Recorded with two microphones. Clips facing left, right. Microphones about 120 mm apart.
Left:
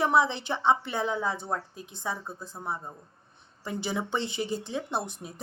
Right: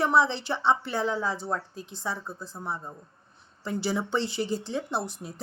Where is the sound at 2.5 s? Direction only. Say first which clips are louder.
Even; 20° left (ahead or behind).